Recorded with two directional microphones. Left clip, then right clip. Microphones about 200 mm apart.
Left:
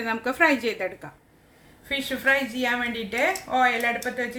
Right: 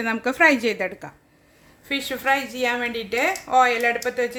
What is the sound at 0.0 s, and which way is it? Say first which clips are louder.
A woman's voice: right 4 dB; 30° right (ahead or behind).